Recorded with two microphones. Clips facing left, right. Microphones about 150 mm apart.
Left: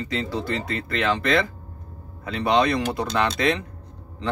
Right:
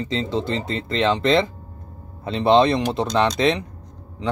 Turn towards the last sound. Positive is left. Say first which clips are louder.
# right 2 dB
turn(degrees=-10)  # may be behind; listen again after turning